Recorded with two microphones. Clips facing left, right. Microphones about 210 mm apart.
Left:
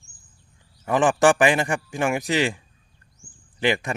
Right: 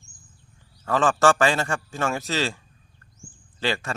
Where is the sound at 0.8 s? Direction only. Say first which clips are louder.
Left 2 dB; 15° left (ahead or behind).